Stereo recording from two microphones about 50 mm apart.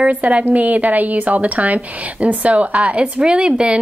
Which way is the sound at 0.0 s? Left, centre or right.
Right.